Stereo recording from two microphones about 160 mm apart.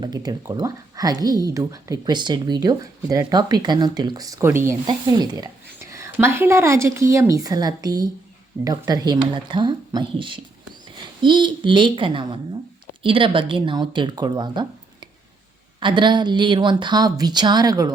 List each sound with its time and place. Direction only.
0.0 s speech: 25° right (ahead or behind)
4.9 s a child's voice: 25° right (ahead or behind)